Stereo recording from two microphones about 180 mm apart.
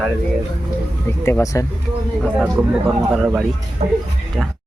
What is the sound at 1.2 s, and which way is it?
Speech, 15° left (ahead or behind).